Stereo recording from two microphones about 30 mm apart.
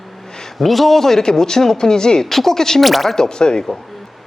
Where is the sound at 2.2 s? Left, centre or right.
Centre.